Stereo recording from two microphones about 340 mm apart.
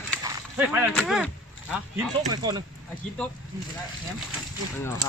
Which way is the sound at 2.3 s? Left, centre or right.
Centre.